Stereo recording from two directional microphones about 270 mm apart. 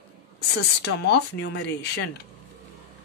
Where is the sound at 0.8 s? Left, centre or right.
Left.